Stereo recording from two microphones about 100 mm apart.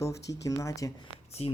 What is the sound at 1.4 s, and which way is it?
Speech, 90° left.